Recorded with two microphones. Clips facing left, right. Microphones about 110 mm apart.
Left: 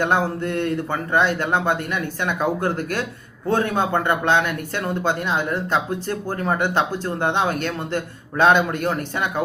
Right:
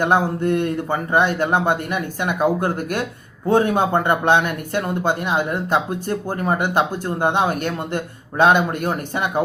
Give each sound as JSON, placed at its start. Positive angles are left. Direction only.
{"t": 0.0, "sound": "speech", "side_deg": -15}